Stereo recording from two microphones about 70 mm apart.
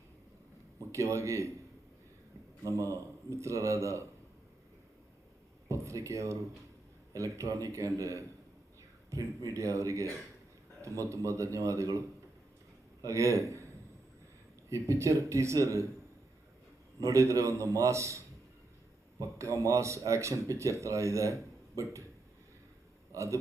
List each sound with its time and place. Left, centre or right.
0.9 s speech: right
2.6 s speech: right
5.6 s a man's voice: right
14.7 s speech: right
17.0 s speech: right
19.2 s speech: right
23.1 s a man's voice: right